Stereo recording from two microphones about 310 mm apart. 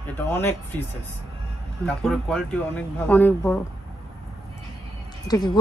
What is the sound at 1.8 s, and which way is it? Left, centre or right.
Speech, centre.